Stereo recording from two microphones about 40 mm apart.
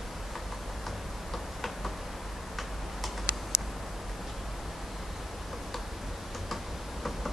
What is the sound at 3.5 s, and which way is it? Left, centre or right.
Tick, left.